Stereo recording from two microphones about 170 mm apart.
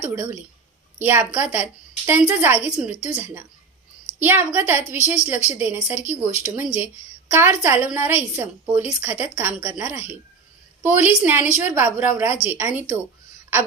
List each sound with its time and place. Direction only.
0.0 s a woman's voice: 15° right (ahead or behind)